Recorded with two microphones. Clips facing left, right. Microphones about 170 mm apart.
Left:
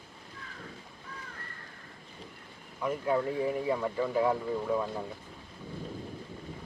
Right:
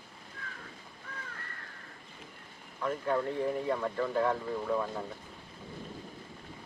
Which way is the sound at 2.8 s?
10° left (ahead or behind).